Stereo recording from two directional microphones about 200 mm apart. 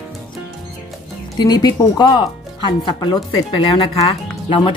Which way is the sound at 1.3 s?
20° left (ahead or behind).